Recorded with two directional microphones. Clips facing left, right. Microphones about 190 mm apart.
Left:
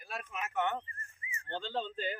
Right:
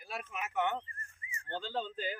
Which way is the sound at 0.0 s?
10° right (ahead or behind).